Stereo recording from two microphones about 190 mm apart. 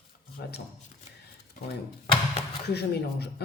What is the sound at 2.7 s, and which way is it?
Speech, 60° left (ahead or behind).